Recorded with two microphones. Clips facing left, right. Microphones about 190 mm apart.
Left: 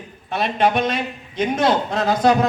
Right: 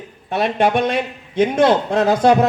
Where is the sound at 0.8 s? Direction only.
60° right (ahead or behind).